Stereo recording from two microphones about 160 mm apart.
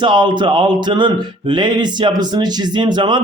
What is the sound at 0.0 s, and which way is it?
Speech, 30° right (ahead or behind).